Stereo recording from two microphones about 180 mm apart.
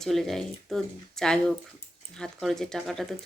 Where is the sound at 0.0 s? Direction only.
Centre (ahead or behind).